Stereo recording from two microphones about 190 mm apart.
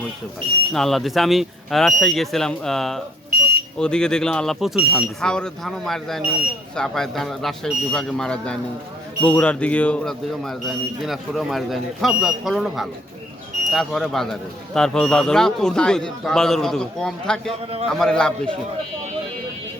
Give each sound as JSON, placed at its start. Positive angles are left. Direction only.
{"t": 0.7, "sound": "speech", "side_deg": 0}
{"t": 3.2, "sound": "smoke detector", "side_deg": -50}
{"t": 3.8, "sound": "speech", "side_deg": 5}